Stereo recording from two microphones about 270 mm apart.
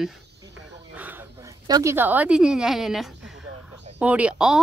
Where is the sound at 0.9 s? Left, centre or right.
Centre.